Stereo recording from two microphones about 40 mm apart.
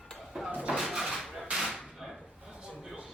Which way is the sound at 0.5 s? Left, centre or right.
Right.